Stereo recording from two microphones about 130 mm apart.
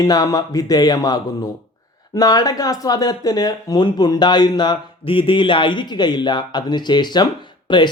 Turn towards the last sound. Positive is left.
turn(degrees=35)  # may be behind; listen again after turning